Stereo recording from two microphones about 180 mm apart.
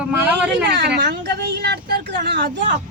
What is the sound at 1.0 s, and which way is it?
Speech, 65° right (ahead or behind).